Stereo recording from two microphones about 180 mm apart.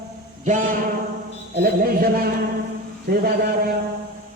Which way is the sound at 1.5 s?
55° right (ahead or behind).